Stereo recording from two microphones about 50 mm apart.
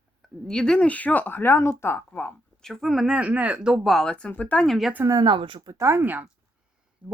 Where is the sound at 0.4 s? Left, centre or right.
Centre.